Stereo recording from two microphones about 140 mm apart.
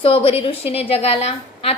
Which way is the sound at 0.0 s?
40° left (ahead or behind).